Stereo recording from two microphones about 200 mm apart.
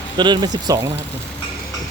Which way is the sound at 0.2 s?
20° right (ahead or behind).